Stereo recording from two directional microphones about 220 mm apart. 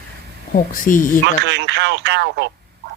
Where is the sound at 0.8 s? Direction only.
35° left (ahead or behind).